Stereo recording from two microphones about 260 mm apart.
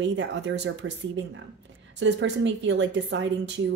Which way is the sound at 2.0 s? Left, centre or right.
Right.